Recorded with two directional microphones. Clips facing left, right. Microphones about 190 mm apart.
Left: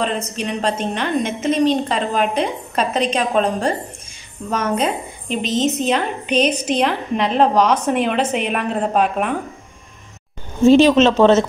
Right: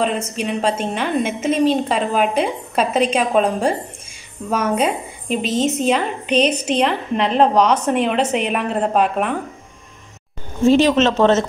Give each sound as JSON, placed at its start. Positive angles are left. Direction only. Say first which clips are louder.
{"t": 0.4, "sound": "a woman's voice", "louder": "right 2 dB", "side_deg": -5}
{"t": 11.0, "sound": "speech", "louder": "left 2 dB", "side_deg": 15}